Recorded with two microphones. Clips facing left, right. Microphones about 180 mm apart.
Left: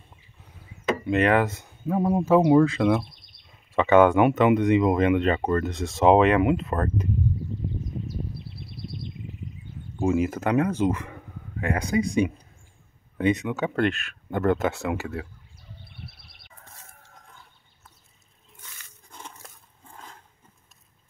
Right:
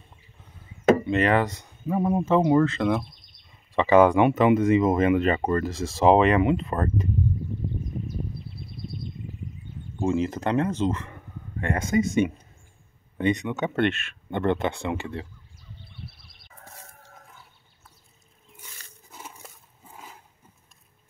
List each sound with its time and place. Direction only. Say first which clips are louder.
1.0 s speech: left 1 dB; centre (ahead or behind)
8.6 s a sound: right 1 dB; 90° left
9.9 s speech: left 1 dB; 10° left (ahead or behind)
11.7 s speech: right 1 dB; centre (ahead or behind)
19.0 s dog: even; 5° right (ahead or behind)